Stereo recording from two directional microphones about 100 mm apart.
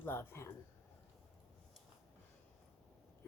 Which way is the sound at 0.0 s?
20° left (ahead or behind).